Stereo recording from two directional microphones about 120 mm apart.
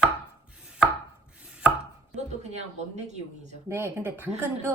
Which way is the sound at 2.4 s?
70° right (ahead or behind).